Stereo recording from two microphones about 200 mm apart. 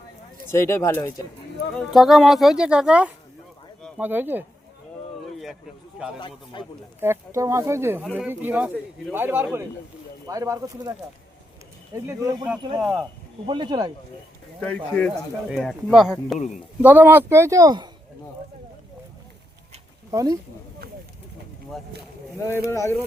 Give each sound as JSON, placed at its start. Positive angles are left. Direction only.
{"t": 0.5, "sound": "speech", "side_deg": 15}
{"t": 1.7, "sound": "speech", "side_deg": 0}
{"t": 6.1, "sound": "speech", "side_deg": 25}
{"t": 7.0, "sound": "speech", "side_deg": -15}
{"t": 12.0, "sound": "speech", "side_deg": -15}
{"t": 12.8, "sound": "speech", "side_deg": 0}
{"t": 13.5, "sound": "speech", "side_deg": -20}
{"t": 14.6, "sound": "speech", "side_deg": 5}
{"t": 20.1, "sound": "speech", "side_deg": -15}
{"t": 22.7, "sound": "speech", "side_deg": 15}